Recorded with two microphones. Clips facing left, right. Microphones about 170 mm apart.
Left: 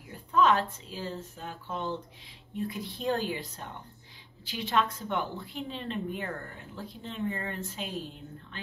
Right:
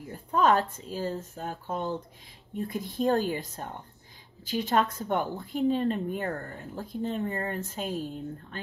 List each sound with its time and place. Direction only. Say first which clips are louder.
0.1 s a woman's voice: right 1 dB; 45° right (ahead or behind)